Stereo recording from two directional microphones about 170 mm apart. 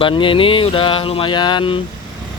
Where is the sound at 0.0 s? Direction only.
30° left (ahead or behind).